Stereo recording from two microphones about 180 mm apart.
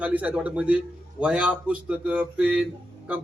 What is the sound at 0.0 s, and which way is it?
A man's voice, 10° right (ahead or behind).